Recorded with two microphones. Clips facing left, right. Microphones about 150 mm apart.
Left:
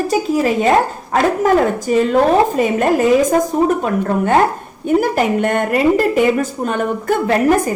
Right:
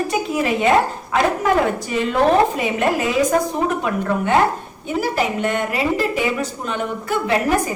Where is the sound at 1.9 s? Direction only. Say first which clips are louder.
Left 5 dB; 45° left (ahead or behind).